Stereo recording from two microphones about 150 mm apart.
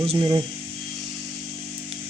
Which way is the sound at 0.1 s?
30° right (ahead or behind).